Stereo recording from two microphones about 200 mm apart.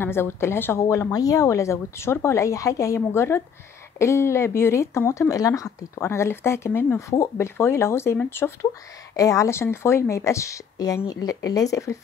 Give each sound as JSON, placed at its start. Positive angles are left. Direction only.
{"t": 0.0, "sound": "speech", "side_deg": 10}